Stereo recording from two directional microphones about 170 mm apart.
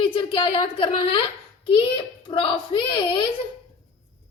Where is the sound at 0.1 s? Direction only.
30° left (ahead or behind).